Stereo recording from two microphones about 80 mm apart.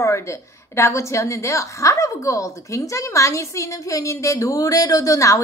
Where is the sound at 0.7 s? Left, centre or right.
Left.